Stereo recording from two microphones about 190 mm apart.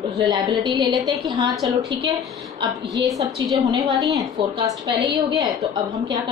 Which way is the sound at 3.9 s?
20° right (ahead or behind).